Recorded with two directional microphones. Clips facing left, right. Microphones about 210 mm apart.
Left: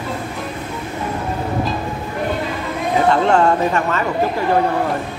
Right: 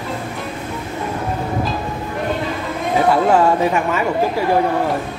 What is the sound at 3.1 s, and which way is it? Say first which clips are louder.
Speech: right 1 dB; 5° right (ahead or behind).